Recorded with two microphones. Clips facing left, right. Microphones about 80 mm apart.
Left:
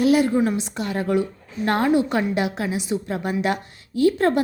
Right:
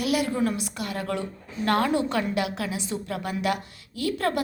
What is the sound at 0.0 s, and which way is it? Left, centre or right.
A woman's voice, left.